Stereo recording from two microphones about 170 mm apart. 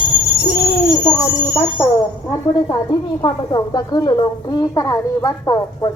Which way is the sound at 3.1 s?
25° left (ahead or behind).